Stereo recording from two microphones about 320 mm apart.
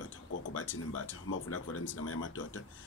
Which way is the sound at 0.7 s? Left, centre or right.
Left.